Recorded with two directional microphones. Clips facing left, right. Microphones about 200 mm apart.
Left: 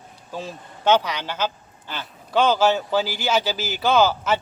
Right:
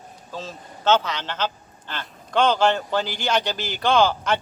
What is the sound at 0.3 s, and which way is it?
A man's voice, 15° left (ahead or behind).